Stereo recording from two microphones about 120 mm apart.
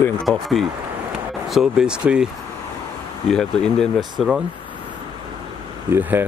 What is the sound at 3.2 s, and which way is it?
Speech, 5° left (ahead or behind).